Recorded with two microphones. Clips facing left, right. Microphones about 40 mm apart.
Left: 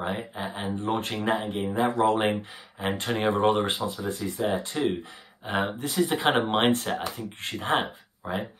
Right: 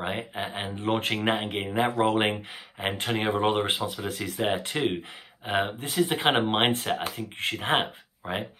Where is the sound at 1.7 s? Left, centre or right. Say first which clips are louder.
Left 1 dB; right.